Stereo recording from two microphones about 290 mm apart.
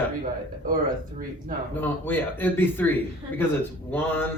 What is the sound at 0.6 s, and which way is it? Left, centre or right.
Speech, right.